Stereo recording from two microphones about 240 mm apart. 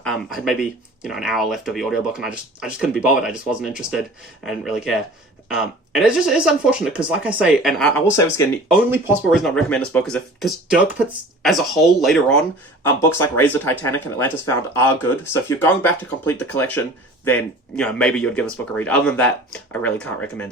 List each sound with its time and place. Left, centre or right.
0.0 s speech: centre
8.7 s speech: centre